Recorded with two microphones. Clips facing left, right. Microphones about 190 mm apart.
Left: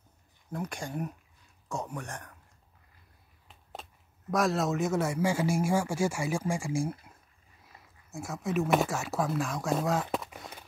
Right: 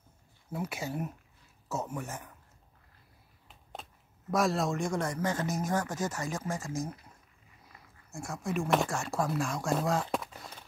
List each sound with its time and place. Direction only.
0.5 s speech: 5° right (ahead or behind)
3.4 s speech: centre (ahead or behind)
8.1 s speech: 5° left (ahead or behind)